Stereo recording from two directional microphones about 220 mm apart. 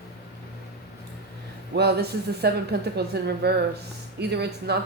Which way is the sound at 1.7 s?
50° right (ahead or behind).